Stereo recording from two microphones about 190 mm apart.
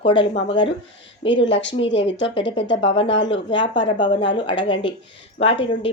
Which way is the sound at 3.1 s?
70° left (ahead or behind).